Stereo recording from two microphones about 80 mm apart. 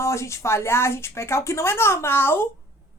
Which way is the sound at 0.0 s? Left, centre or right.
Left.